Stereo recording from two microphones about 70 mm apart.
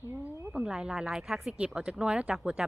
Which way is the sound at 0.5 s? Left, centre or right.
Centre.